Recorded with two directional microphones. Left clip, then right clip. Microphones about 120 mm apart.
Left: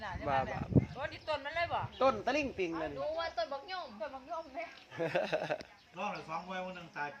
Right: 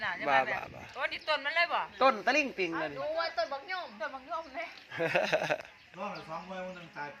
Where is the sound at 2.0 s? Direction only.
25° right (ahead or behind).